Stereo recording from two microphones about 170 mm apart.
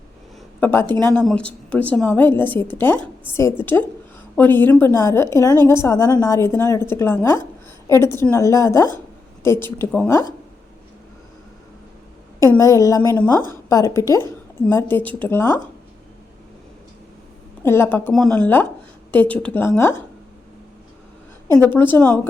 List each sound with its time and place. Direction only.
0.6 s a woman's voice: 10° left (ahead or behind)
12.5 s a woman's voice: 20° left (ahead or behind)
17.6 s a woman's voice: 15° left (ahead or behind)
21.6 s a woman's voice: 10° left (ahead or behind)